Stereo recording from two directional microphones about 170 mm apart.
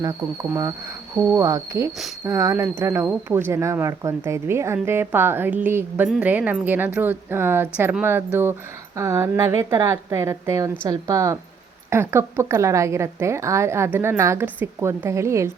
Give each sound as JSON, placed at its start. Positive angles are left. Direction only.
{"t": 0.5, "sound": "speech", "side_deg": -15}